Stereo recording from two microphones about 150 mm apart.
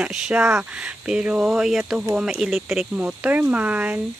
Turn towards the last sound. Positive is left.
turn(degrees=-10)  # may be behind; listen again after turning